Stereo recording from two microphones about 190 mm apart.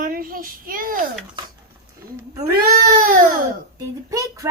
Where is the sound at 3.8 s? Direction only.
15° right (ahead or behind).